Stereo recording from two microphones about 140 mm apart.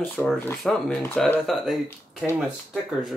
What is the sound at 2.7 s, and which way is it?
Speech, centre (ahead or behind).